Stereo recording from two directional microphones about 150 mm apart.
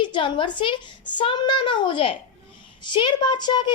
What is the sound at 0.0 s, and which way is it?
A woman's voice, 30° left (ahead or behind).